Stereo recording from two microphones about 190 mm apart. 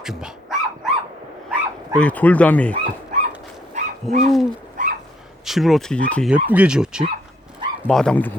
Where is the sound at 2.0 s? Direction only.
10° left (ahead or behind).